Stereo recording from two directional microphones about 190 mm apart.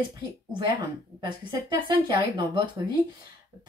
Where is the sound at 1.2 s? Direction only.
25° right (ahead or behind).